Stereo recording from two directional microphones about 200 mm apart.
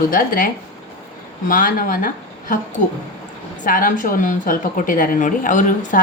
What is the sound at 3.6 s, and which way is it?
A woman's voice, 40° left (ahead or behind).